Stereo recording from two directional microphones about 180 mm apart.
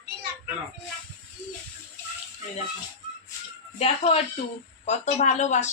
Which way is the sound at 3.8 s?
30° left (ahead or behind).